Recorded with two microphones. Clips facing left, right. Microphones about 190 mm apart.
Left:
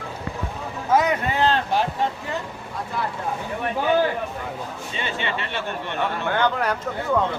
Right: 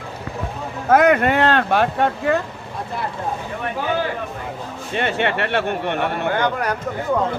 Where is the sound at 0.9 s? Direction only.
60° right (ahead or behind).